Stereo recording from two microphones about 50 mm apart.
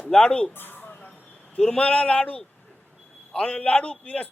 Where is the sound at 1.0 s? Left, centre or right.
Left.